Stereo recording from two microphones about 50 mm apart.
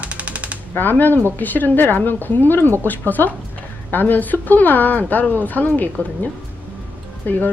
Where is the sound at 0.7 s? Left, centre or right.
Left.